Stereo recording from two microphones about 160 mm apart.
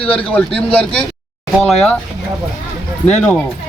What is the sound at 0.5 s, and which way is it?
Speech, 5° left (ahead or behind).